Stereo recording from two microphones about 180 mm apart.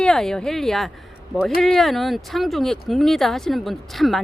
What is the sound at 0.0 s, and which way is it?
Speech, 5° left (ahead or behind).